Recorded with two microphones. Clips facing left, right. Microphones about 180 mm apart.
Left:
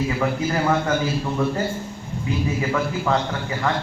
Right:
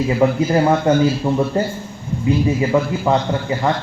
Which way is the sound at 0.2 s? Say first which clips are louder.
Right 7 dB; 30° right (ahead or behind).